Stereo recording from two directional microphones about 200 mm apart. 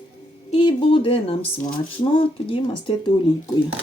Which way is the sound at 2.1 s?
25° left (ahead or behind).